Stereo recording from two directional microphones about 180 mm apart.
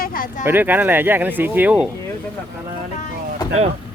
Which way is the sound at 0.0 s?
50° left (ahead or behind).